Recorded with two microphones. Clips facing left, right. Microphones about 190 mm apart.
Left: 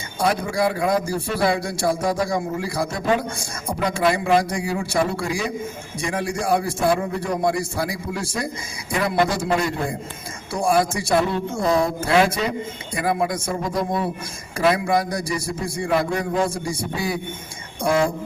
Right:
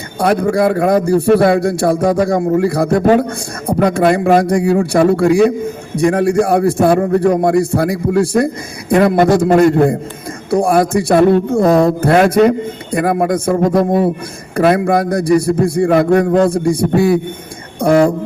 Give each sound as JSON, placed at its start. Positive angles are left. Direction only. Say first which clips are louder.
{"t": 0.2, "sound": "a man's voice", "louder": "right 8 dB", "side_deg": -60}